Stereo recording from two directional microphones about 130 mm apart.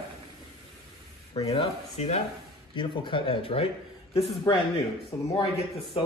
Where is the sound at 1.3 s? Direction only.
50° left (ahead or behind).